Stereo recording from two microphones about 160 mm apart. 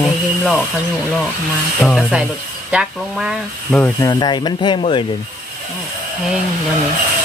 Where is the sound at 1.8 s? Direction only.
Centre (ahead or behind).